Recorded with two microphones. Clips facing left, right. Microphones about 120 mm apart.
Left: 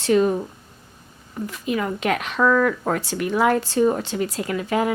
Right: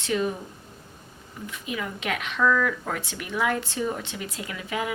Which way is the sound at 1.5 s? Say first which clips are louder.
Left 8 dB; 45° left (ahead or behind).